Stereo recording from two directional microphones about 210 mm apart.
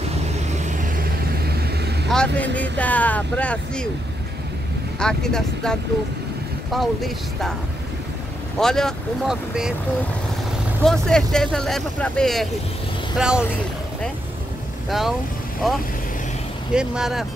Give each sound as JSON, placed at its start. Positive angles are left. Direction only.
{"t": 0.5, "sound": "vehicle", "side_deg": -35}
{"t": 2.0, "sound": "speech", "side_deg": 5}
{"t": 4.9, "sound": "speech", "side_deg": 5}
{"t": 8.5, "sound": "speech", "side_deg": 0}
{"t": 10.9, "sound": "speech", "side_deg": 5}
{"t": 14.9, "sound": "speech", "side_deg": 0}